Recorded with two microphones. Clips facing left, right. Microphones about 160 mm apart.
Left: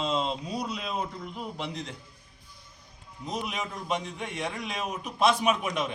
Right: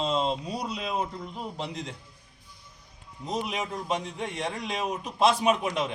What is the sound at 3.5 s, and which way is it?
A man's voice, 35° right (ahead or behind).